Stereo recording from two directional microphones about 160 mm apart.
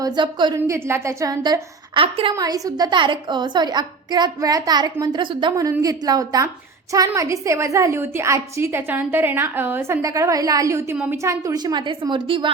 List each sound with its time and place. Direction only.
0.0 s a woman's voice: 30° right (ahead or behind)
0.7 s a woman's voice: 15° right (ahead or behind)